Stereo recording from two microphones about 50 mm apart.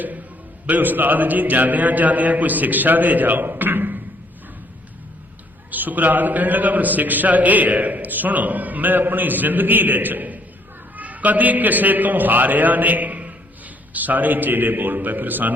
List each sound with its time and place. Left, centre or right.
0.7 s a man's voice: right
5.7 s a man's voice: right